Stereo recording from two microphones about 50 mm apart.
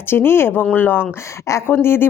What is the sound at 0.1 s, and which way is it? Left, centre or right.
Speech, left.